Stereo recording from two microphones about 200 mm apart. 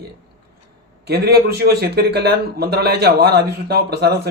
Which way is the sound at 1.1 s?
50° right (ahead or behind).